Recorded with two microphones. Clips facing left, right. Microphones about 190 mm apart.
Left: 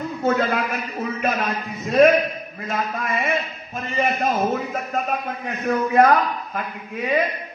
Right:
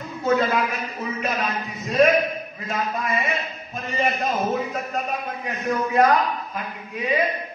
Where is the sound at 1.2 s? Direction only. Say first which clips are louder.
Left 2 dB; 55° left (ahead or behind).